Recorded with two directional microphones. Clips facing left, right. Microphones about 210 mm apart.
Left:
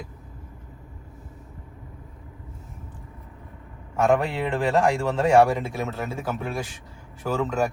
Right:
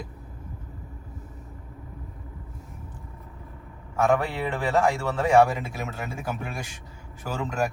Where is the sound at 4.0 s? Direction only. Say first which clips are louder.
Left 2 dB; centre (ahead or behind).